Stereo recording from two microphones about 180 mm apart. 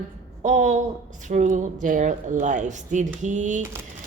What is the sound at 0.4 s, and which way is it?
A woman's voice, 40° right (ahead or behind).